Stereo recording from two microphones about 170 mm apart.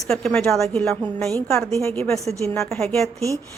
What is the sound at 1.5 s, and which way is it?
Speech, 15° left (ahead or behind).